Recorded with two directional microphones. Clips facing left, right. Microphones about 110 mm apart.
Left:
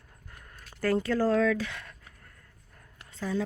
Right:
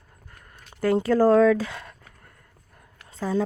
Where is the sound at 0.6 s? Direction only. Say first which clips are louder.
Right 5 dB; 20° right (ahead or behind).